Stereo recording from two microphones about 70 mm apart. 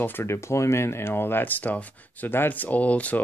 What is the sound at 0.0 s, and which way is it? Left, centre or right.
Speech, left.